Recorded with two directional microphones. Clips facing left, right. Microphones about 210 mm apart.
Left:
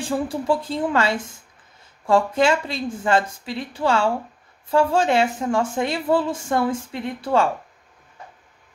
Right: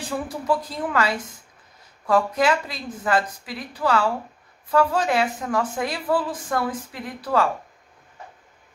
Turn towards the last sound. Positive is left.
turn(degrees=25)  # may be behind; listen again after turning